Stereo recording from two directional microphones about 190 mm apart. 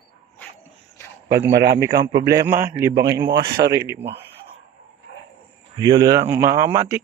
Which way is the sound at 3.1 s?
10° right (ahead or behind).